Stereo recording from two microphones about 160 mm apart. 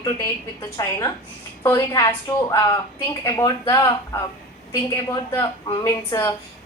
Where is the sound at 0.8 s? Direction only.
25° left (ahead or behind).